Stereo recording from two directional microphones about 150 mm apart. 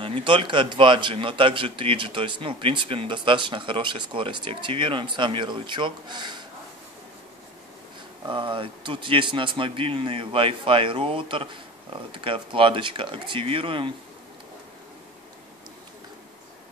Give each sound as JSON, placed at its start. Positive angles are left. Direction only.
{"t": 0.0, "sound": "a man's voice", "side_deg": -35}
{"t": 8.3, "sound": "a man's voice", "side_deg": -35}